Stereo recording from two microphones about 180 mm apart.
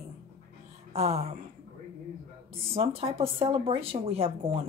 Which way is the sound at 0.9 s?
35° right (ahead or behind).